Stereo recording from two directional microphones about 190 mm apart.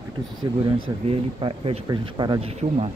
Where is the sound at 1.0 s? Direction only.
30° right (ahead or behind).